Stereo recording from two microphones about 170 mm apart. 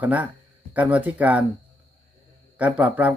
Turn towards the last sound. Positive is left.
turn(degrees=-10)  # may be behind; listen again after turning